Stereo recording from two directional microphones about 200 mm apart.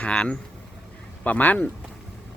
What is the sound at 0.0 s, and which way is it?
Speech, 5° left (ahead or behind).